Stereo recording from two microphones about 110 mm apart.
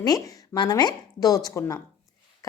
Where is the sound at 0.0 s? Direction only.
35° left (ahead or behind).